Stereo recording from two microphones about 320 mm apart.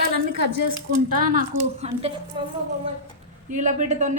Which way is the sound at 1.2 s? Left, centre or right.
Right.